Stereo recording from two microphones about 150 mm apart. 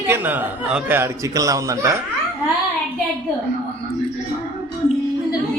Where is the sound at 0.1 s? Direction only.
15° right (ahead or behind).